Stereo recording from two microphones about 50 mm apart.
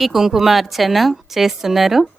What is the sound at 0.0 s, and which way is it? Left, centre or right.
A woman's voice, centre.